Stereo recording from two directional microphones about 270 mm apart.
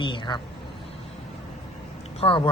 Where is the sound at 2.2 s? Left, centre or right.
Centre.